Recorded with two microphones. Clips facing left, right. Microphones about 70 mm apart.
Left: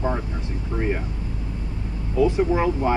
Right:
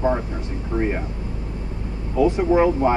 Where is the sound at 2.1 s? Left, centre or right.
Right.